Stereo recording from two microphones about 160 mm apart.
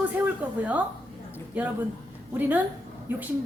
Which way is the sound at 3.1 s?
10° right (ahead or behind).